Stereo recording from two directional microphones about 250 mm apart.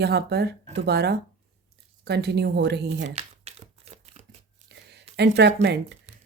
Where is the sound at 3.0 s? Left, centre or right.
Right.